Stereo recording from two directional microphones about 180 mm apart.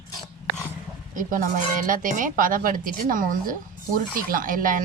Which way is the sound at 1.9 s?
45° right (ahead or behind).